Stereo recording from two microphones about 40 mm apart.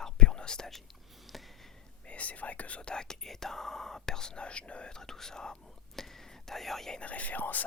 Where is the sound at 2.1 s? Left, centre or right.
Left.